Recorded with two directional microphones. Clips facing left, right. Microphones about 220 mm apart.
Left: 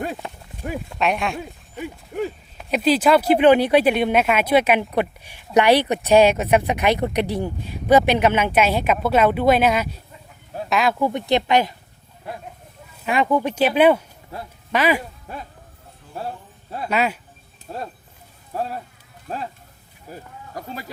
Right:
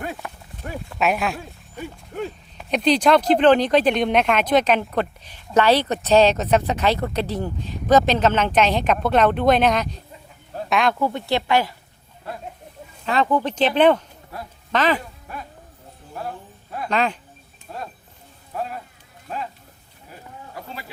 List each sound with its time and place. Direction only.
0.6 s a sound: 15° left (ahead or behind)
0.9 s speech: 5° right (ahead or behind)
10.5 s a sound: 5° left (ahead or behind)
11.0 s speech: 20° left (ahead or behind)
13.1 s speech: 10° left (ahead or behind)
16.9 s speech: 10° left (ahead or behind)
17.7 s speech: 35° left (ahead or behind)